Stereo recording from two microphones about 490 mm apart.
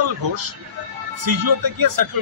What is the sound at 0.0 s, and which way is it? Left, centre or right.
Speech, right.